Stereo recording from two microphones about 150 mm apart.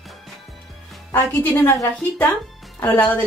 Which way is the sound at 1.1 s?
15° left (ahead or behind).